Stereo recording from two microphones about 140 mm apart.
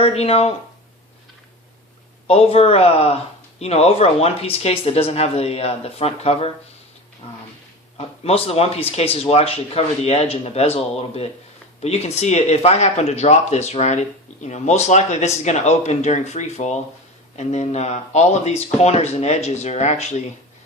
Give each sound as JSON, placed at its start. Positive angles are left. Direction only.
{"t": 0.0, "sound": "speech", "side_deg": 45}
{"t": 2.2, "sound": "speech", "side_deg": 45}
{"t": 7.9, "sound": "speech", "side_deg": 45}